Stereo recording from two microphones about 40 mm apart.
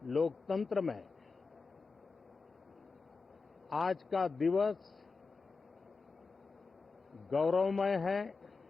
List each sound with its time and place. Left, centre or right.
0.0 s a man's voice: centre
3.7 s a man's voice: centre
7.1 s a man's voice: centre